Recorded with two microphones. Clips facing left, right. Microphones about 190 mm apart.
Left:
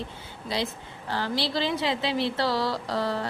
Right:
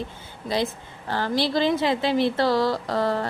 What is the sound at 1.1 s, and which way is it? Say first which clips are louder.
A woman's voice: right 5 dB; 50° right (ahead or behind).